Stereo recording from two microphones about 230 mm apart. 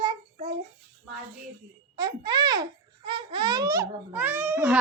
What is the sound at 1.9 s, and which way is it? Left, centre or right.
A child's voice, centre.